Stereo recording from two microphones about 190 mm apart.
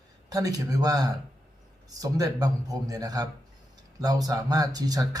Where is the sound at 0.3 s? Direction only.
20° right (ahead or behind).